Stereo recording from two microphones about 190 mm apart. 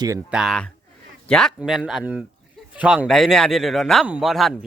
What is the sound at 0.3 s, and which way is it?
Speech, centre (ahead or behind).